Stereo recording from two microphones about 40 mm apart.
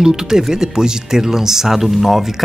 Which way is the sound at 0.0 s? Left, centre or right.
Centre.